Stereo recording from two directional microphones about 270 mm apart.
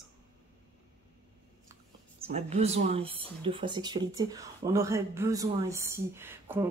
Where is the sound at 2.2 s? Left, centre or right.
Right.